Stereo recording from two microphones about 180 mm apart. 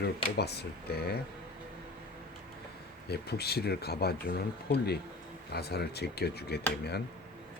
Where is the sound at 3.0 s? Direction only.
65° left (ahead or behind).